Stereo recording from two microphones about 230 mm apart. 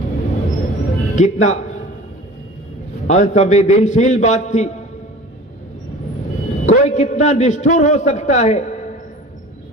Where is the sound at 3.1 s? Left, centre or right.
Left.